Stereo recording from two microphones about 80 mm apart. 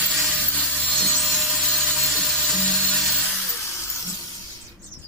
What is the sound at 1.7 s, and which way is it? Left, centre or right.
Music, centre.